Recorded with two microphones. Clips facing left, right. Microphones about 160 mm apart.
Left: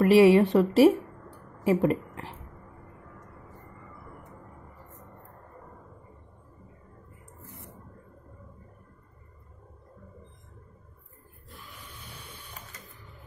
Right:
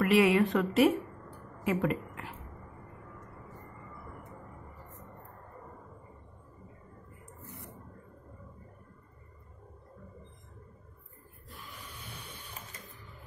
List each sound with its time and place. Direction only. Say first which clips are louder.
0.0 s a woman's voice: left 7 dB; 35° left (ahead or behind)